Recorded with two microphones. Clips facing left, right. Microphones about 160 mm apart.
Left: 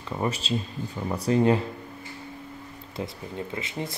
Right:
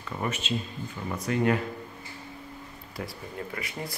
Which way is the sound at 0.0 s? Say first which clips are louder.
Left 3 dB; 25° left (ahead or behind).